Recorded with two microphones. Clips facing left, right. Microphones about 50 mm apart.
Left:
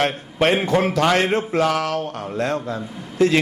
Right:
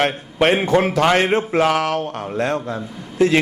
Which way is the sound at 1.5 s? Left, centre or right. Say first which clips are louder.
Right 2 dB; right.